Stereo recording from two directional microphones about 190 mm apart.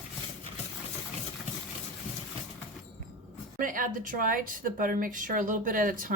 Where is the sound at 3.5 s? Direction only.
45° right (ahead or behind).